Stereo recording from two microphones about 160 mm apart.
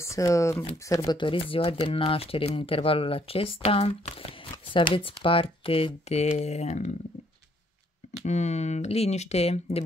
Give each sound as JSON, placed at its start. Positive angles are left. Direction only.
{"t": 0.0, "sound": "speech", "side_deg": 20}
{"t": 8.2, "sound": "speech", "side_deg": 45}